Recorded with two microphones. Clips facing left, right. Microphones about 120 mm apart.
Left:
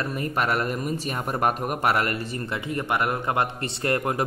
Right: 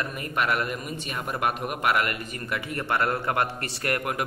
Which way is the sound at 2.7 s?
20° left (ahead or behind).